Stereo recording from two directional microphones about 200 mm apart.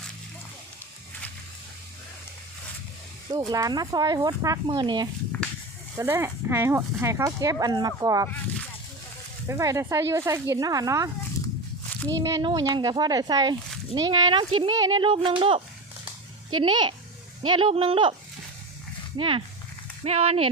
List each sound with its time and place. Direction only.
3.3 s speech: 20° right (ahead or behind)
9.5 s speech: 15° right (ahead or behind)
12.2 s speech: 20° right (ahead or behind)
19.1 s speech: 25° right (ahead or behind)